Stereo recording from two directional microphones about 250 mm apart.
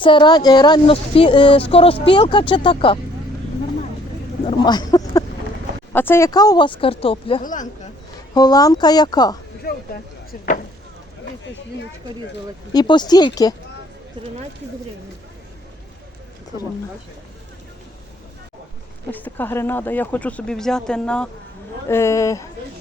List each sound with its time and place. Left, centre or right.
0.0 s speech: centre
4.4 s speech: centre
8.3 s speech: centre
9.7 s speech: left
12.7 s speech: centre
19.1 s speech: centre